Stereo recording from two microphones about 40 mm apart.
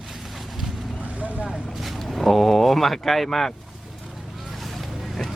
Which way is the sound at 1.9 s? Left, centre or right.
Centre.